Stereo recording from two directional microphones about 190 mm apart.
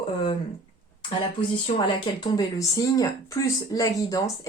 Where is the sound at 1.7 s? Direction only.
25° left (ahead or behind).